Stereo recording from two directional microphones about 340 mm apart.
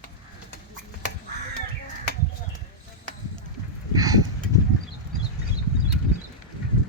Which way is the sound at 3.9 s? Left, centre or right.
Centre.